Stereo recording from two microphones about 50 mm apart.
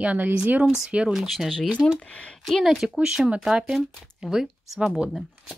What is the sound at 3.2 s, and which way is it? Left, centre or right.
Speech, centre.